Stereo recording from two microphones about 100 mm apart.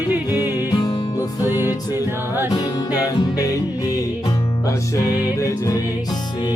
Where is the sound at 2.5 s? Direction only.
40° left (ahead or behind).